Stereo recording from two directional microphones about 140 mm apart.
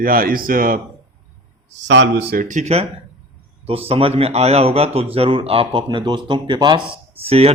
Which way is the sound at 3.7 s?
40° right (ahead or behind).